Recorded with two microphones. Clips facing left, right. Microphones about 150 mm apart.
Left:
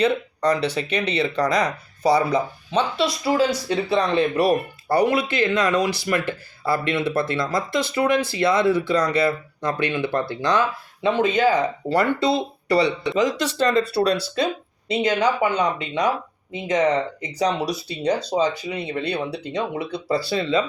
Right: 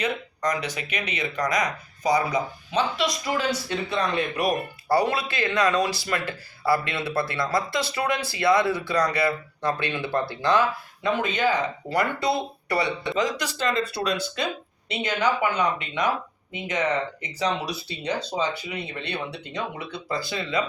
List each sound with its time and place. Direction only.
0.0 s speech: 30° left (ahead or behind)
4.9 s speech: 20° left (ahead or behind)
6.9 s speech: 20° left (ahead or behind)
13.7 s speech: 35° left (ahead or behind)